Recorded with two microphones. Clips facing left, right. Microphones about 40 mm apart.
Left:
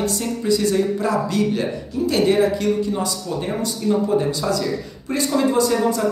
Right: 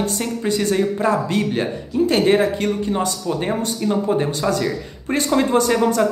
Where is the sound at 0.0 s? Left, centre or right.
Right.